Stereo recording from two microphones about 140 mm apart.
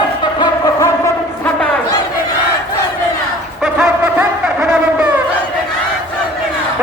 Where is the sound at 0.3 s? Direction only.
30° left (ahead or behind).